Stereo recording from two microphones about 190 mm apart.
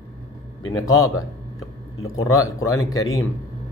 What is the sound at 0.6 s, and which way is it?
Speech, 15° left (ahead or behind).